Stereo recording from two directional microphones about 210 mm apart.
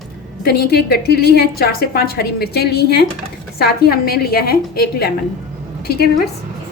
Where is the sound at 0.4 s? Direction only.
50° left (ahead or behind).